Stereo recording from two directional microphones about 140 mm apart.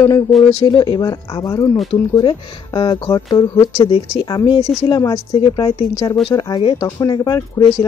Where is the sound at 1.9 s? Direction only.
40° left (ahead or behind).